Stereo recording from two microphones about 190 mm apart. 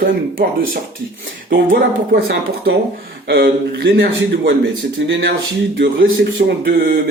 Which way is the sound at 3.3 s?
55° right (ahead or behind).